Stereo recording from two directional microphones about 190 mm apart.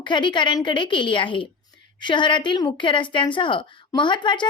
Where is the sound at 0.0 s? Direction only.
25° left (ahead or behind).